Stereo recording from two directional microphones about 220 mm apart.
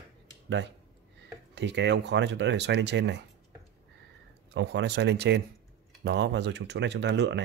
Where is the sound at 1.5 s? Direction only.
50° right (ahead or behind).